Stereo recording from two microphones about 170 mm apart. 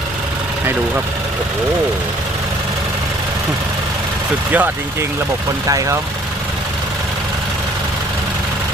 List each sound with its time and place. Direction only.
4.5 s speech: 10° right (ahead or behind)